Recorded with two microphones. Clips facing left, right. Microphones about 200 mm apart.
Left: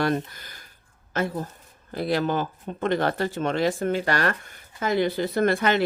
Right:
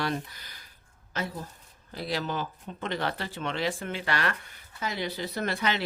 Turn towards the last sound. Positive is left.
turn(degrees=50)  # may be behind; listen again after turning